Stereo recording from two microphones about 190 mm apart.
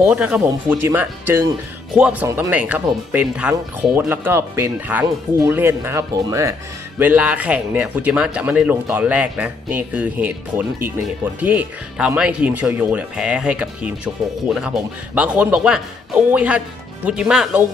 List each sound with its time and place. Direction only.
0.0 s speech: 5° right (ahead or behind)